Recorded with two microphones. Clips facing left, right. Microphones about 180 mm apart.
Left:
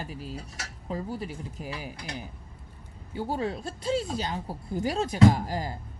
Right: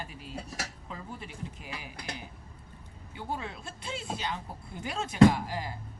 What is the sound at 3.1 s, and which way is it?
Speech, 40° left (ahead or behind).